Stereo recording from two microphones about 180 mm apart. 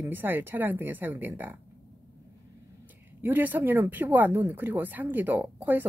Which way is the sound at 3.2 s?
10° right (ahead or behind).